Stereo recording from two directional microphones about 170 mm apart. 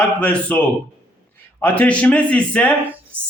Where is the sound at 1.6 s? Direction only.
10° left (ahead or behind).